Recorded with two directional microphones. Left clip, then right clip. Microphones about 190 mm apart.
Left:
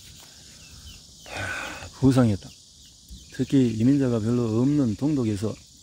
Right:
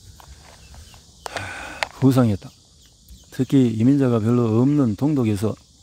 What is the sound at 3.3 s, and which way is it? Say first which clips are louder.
Speech: right 4 dB; 40° right (ahead or behind).